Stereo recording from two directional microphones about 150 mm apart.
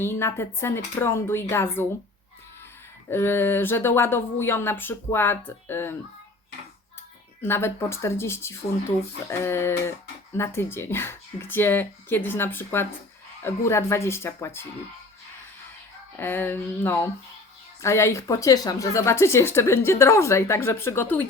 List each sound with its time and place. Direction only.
0.0 s speech: 15° left (ahead or behind)
3.1 s speech: 15° left (ahead or behind)
7.4 s speech: 15° left (ahead or behind)
16.1 s speech: 15° left (ahead or behind)